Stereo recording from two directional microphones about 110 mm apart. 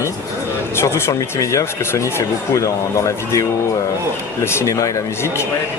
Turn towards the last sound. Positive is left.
turn(degrees=30)  # may be behind; listen again after turning